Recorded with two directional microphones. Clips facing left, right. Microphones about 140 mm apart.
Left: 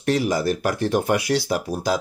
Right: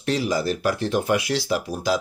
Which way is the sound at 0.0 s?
45° left (ahead or behind).